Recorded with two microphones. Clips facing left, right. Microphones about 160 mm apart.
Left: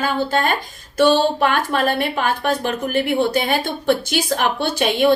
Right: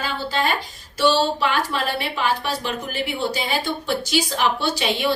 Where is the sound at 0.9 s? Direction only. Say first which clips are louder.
Left 4 dB; 50° left (ahead or behind).